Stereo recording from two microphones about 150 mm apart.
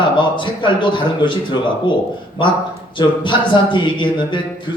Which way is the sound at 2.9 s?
30° left (ahead or behind).